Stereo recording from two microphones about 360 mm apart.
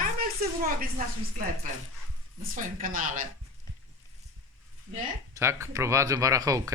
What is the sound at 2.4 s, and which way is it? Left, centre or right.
Speech, right.